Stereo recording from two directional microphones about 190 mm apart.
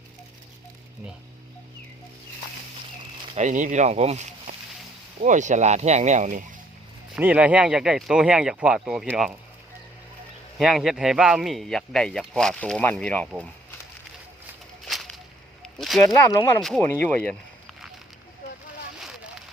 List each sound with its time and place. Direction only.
3.3 s speech: 40° right (ahead or behind)
7.2 s speech: 10° right (ahead or behind)
10.6 s speech: centre (ahead or behind)
15.6 s speech: centre (ahead or behind)
16.1 s speech: 20° left (ahead or behind)
16.6 s speech: centre (ahead or behind)